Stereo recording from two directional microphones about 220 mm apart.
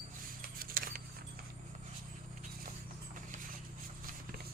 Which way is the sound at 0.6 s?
40° right (ahead or behind).